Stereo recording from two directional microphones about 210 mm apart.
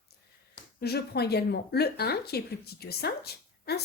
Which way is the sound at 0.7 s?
50° left (ahead or behind).